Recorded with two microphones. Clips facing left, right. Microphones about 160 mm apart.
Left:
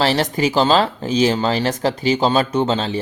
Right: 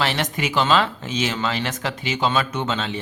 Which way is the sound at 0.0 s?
35° left (ahead or behind).